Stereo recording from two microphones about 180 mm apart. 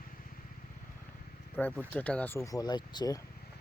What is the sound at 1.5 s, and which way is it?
Speech, 10° left (ahead or behind).